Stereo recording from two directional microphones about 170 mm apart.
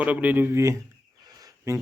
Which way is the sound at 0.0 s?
10° right (ahead or behind).